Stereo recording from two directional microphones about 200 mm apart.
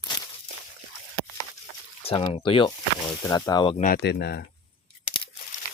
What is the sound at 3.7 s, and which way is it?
Speech, 45° left (ahead or behind).